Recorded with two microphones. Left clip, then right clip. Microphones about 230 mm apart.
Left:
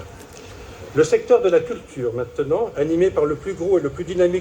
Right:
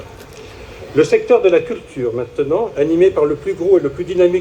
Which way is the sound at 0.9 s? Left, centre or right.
Right.